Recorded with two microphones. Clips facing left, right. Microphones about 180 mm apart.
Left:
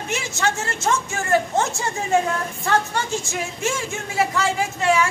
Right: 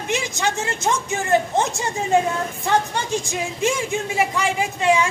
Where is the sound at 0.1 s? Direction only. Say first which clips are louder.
Right 1 dB; 15° right (ahead or behind).